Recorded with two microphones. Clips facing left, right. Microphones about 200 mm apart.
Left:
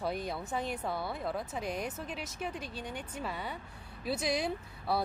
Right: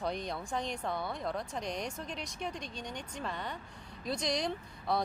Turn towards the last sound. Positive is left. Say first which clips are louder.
# even
turn(degrees=5)  # may be behind; listen again after turning